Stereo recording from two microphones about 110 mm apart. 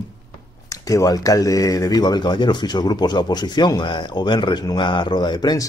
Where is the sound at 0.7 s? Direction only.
30° left (ahead or behind).